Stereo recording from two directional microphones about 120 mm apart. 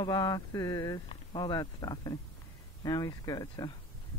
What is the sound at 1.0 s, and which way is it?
Speech, 35° left (ahead or behind).